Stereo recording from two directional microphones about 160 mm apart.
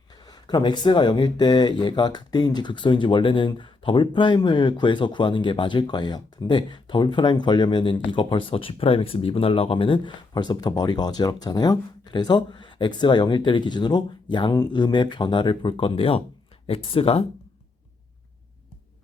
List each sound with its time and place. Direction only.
0.3 s speech: 25° left (ahead or behind)